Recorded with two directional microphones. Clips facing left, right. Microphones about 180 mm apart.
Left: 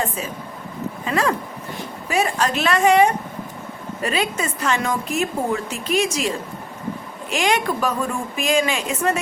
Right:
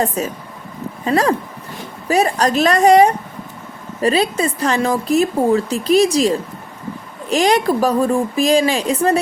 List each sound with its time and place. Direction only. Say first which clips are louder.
0.2 s a woman's voice: right 6 dB; 40° right (ahead or behind)